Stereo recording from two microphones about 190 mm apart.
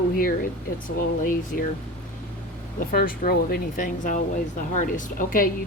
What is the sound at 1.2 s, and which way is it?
Speech, 45° left (ahead or behind).